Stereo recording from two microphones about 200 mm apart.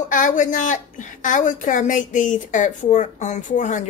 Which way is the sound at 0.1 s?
40° left (ahead or behind).